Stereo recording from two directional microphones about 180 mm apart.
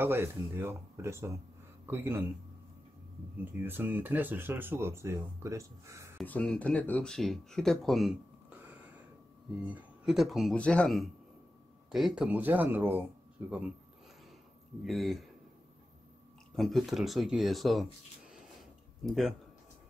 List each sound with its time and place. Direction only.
0.0 s speech: 10° right (ahead or behind)
3.6 s speech: 10° right (ahead or behind)
6.2 s speech: 10° left (ahead or behind)
14.9 s speech: centre (ahead or behind)
16.5 s speech: centre (ahead or behind)
19.0 s speech: centre (ahead or behind)